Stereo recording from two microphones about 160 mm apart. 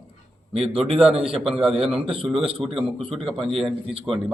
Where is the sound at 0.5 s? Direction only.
35° right (ahead or behind).